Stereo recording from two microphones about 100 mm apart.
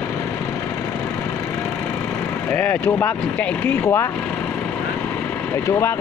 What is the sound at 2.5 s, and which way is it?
Speech, 20° left (ahead or behind).